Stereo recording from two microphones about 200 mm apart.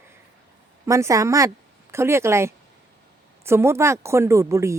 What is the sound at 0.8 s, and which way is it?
Speech, 15° right (ahead or behind).